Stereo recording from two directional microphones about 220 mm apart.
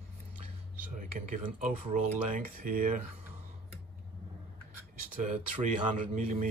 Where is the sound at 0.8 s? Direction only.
35° right (ahead or behind).